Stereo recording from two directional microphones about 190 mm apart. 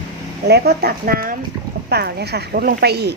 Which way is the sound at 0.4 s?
60° right (ahead or behind).